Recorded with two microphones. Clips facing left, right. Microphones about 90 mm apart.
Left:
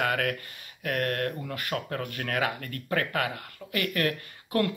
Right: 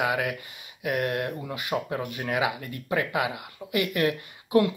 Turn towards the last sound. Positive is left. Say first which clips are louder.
# right 5 dB
turn(degrees=-15)  # may be behind; listen again after turning